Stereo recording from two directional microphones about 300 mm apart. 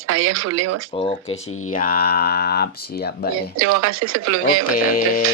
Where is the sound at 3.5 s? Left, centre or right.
Right.